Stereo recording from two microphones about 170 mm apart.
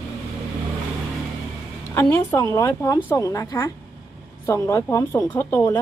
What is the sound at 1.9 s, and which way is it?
A woman's voice, 15° left (ahead or behind).